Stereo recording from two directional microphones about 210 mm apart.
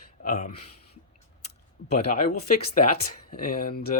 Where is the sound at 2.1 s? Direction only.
40° left (ahead or behind).